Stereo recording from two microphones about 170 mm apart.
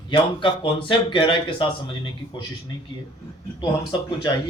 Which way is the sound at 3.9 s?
30° left (ahead or behind).